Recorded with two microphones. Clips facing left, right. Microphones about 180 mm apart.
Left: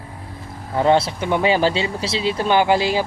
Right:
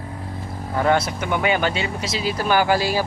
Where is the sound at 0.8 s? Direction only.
25° left (ahead or behind).